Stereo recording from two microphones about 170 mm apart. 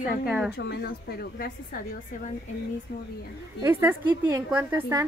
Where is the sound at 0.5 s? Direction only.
80° left; by 2.3 s 60° left (ahead or behind).